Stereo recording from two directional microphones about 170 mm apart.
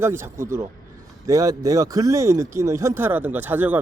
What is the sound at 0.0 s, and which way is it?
Speech, 15° right (ahead or behind).